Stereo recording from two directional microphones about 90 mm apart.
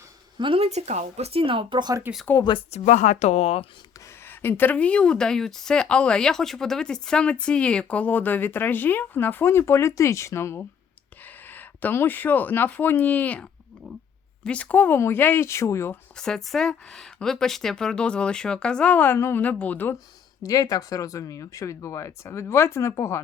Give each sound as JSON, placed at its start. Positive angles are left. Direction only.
{"t": 0.3, "sound": "speech", "side_deg": -75}
{"t": 1.3, "sound": "speech", "side_deg": -90}
{"t": 2.1, "sound": "speech", "side_deg": -20}
{"t": 2.4, "sound": "speech", "side_deg": 65}
{"t": 4.3, "sound": "speech", "side_deg": 25}
{"t": 16.1, "sound": "speech", "side_deg": 5}
{"t": 20.4, "sound": "speech", "side_deg": 40}